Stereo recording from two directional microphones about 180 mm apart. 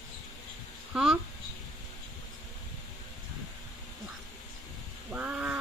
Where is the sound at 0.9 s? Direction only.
5° right (ahead or behind).